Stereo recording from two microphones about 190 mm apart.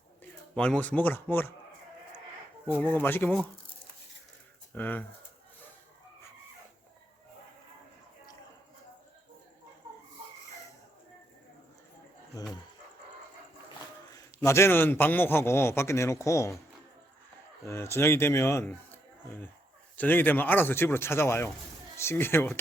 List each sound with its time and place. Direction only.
0.2 s speech: 5° left (ahead or behind)
2.7 s a man's voice: 10° left (ahead or behind)
4.7 s a man's voice: 10° left (ahead or behind)
12.3 s speech: 20° left (ahead or behind)
14.1 s a man's voice: 15° left (ahead or behind)
17.7 s a man's voice: 15° left (ahead or behind)
20.0 s a man's voice: 10° left (ahead or behind)